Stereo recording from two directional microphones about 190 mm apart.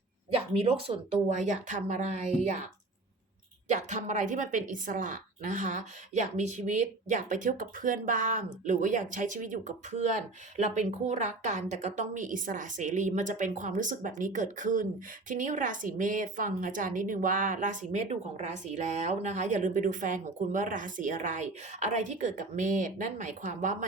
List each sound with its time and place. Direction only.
0.5 s a woman's voice: 30° right (ahead or behind)
3.7 s a woman's voice: 40° right (ahead or behind)